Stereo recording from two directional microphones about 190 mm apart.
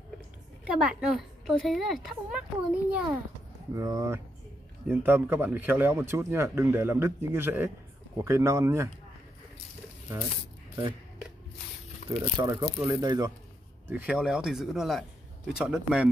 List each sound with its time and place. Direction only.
0.7 s a woman's voice: 5° right (ahead or behind)
3.7 s speech: 15° right (ahead or behind)
12.0 s a sound: 45° left (ahead or behind)
12.4 s speech: 20° right (ahead or behind)
13.8 s a woman's voice: 5° right (ahead or behind)